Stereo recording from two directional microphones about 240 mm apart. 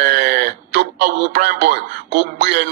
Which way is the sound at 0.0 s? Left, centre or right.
Right.